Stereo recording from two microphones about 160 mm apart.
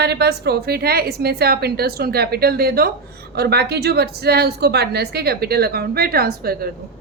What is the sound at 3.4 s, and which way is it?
A woman's voice, 90° right.